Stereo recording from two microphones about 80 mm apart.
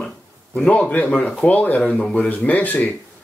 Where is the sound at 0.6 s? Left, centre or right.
Centre.